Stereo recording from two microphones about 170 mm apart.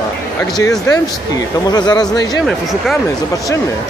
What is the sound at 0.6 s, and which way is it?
Speech, 20° left (ahead or behind).